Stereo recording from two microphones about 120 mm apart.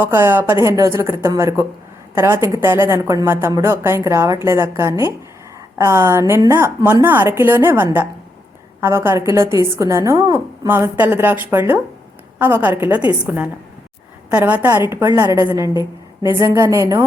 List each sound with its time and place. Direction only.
0.0 s a woman's voice: 20° right (ahead or behind)